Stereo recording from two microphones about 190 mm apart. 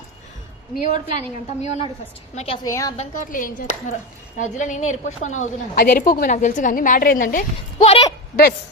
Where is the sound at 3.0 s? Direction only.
45° left (ahead or behind).